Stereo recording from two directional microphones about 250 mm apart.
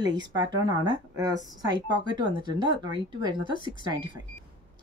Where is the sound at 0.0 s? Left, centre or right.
Centre.